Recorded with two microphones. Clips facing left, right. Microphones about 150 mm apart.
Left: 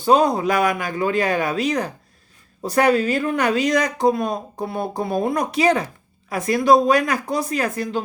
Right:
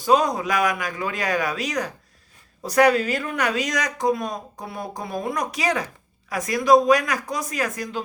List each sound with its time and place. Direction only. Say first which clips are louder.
0.0 s speech: left 3 dB; 30° left (ahead or behind)